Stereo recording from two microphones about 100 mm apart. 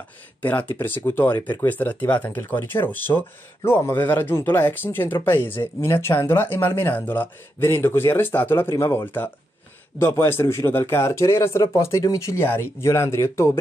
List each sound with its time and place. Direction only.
0.4 s speech: 15° left (ahead or behind)